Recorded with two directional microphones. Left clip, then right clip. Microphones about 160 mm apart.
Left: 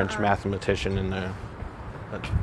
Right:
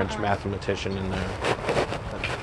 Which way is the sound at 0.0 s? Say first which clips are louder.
Left 2 dB; 50° left (ahead or behind).